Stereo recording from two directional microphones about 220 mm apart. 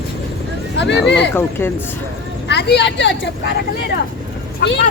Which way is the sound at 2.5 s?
50° left (ahead or behind).